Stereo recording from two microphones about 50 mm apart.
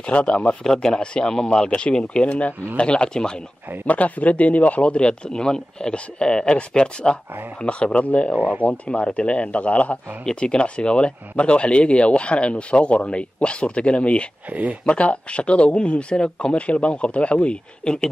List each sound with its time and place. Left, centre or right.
0.0 s speech: left
0.7 s speech: centre
3.8 s speech: left
8.4 s speech: right
8.6 s speech: left
14.5 s speech: right
14.9 s speech: left